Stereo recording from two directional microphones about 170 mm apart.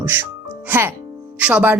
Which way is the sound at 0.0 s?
10° right (ahead or behind).